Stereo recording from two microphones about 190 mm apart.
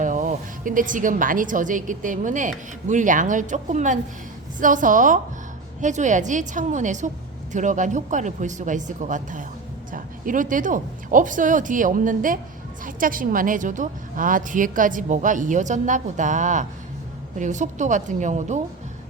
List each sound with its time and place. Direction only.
0.0 s a woman's voice: 45° right (ahead or behind)